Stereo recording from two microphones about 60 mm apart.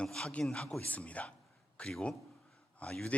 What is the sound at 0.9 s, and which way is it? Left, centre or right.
A man's voice, left.